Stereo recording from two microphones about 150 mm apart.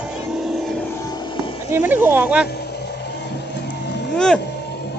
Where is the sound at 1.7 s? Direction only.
15° right (ahead or behind).